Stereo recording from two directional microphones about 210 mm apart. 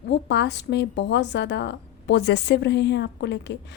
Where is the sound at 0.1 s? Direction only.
55° left (ahead or behind).